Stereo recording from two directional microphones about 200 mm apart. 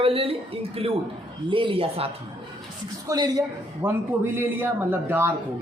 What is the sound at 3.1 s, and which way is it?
A man's voice, 20° right (ahead or behind).